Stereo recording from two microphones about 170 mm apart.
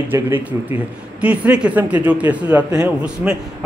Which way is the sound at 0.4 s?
10° right (ahead or behind).